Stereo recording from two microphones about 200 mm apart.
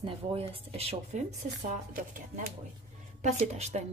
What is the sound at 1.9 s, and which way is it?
A woman's voice, 40° right (ahead or behind).